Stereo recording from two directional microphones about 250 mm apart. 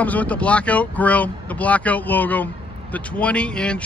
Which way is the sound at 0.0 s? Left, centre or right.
Centre.